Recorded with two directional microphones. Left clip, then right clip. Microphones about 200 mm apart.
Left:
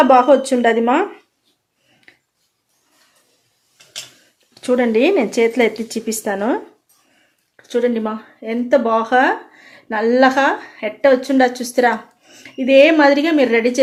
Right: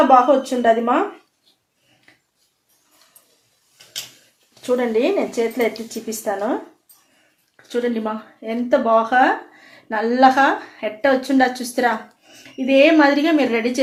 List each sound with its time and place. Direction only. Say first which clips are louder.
0.1 s speech: left 2 dB; 50° left (ahead or behind)
4.6 s speech: left 4 dB; 50° left (ahead or behind)
7.5 s speech: left 4 dB; 35° left (ahead or behind)